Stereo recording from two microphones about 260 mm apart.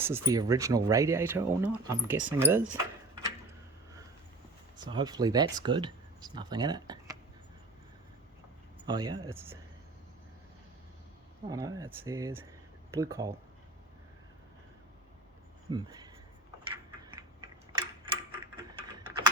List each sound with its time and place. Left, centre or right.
0.0 s speech: centre
4.8 s speech: centre
8.9 s speech: centre
11.4 s speech: centre
15.7 s speech: centre
16.6 s tick-tock: centre